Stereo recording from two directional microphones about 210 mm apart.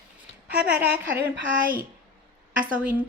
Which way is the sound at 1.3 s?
40° right (ahead or behind).